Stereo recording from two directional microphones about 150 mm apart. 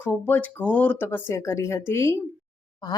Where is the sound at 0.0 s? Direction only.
15° left (ahead or behind).